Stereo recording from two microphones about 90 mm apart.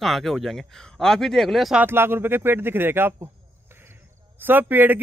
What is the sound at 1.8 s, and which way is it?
Speech, 25° right (ahead or behind).